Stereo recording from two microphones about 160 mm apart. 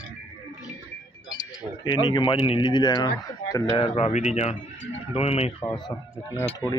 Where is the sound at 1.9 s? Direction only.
30° left (ahead or behind).